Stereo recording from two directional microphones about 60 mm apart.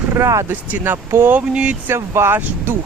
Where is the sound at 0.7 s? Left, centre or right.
Right.